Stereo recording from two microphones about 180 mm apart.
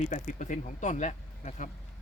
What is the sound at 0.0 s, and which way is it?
Speech, 45° left (ahead or behind).